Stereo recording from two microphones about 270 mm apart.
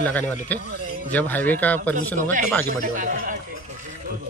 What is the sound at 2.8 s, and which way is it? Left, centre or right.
Speech, right.